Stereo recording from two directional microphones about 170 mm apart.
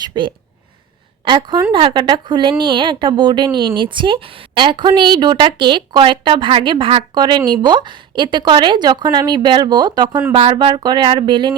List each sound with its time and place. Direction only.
0.0 s a woman's voice: 30° right (ahead or behind)